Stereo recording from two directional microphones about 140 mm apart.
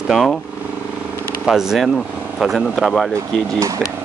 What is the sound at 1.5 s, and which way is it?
Speech, 5° right (ahead or behind).